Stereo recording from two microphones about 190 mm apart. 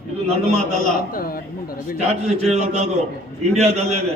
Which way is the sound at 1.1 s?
50° left (ahead or behind).